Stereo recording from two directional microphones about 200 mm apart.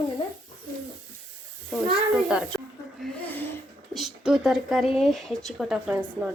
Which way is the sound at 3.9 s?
Centre (ahead or behind).